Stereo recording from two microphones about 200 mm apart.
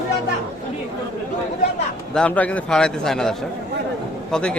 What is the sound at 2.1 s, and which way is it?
A man's voice, 5° left (ahead or behind).